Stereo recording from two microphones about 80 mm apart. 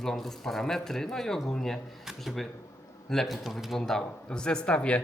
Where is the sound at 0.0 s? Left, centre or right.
Centre.